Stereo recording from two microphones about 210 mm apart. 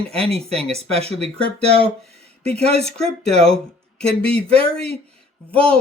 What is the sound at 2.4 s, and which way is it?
Speech, 30° right (ahead or behind).